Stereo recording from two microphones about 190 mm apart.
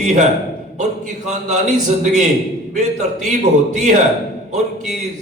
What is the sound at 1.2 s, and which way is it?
A man's voice, 40° right (ahead or behind).